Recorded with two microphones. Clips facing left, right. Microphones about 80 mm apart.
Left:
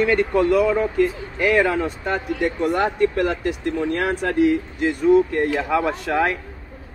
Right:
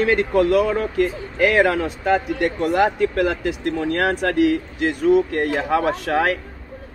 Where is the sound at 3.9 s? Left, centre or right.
Right.